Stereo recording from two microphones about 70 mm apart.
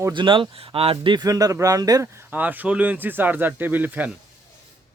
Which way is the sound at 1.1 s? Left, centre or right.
Right.